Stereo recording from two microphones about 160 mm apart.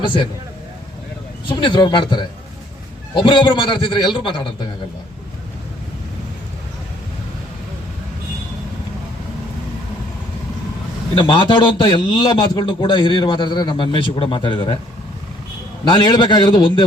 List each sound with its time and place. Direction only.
0.0 s a man's voice: 30° left (ahead or behind)
1.5 s a man's voice: 30° left (ahead or behind)
11.1 s a man's voice: 30° left (ahead or behind)
15.8 s a man's voice: 30° left (ahead or behind)